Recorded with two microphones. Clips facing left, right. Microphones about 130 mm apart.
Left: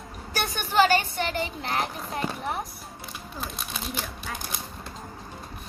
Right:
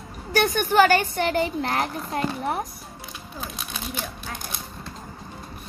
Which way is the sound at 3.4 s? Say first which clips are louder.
Right 1 dB; centre (ahead or behind).